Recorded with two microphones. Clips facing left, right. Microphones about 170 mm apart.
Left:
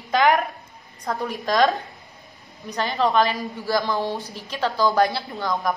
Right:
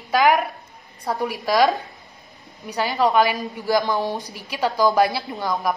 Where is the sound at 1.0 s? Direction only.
15° right (ahead or behind).